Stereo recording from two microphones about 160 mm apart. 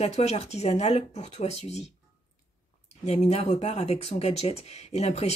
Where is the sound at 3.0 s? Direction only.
40° left (ahead or behind).